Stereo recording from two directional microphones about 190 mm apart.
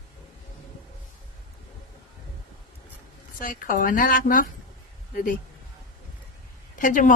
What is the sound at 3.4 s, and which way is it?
A woman's voice, 45° left (ahead or behind).